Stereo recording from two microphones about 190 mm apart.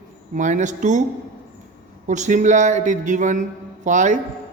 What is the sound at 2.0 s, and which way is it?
A man's voice, 40° right (ahead or behind).